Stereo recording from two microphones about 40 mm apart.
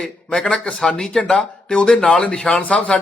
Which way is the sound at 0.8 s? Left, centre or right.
Centre.